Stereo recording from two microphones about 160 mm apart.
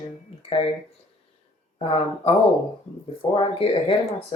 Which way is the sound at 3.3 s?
35° left (ahead or behind).